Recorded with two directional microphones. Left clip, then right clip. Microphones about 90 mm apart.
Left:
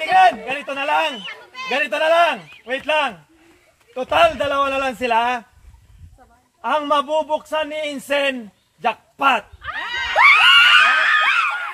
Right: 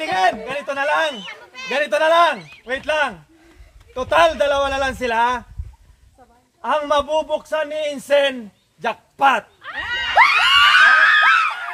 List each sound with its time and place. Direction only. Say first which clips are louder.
0.0 s a man's voice: left 5 dB; 25° right (ahead or behind)
6.6 s a man's voice: even; 30° right (ahead or behind)
9.6 s dog: left 1 dB; 30° left (ahead or behind)
9.8 s a sound: right 2 dB; 40° right (ahead or behind)
10.1 s screaming: left 2 dB; 25° right (ahead or behind)